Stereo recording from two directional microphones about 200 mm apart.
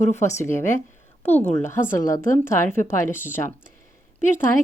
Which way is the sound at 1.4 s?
35° left (ahead or behind).